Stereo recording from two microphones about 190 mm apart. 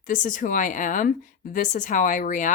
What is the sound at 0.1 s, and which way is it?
Speech, 45° left (ahead or behind).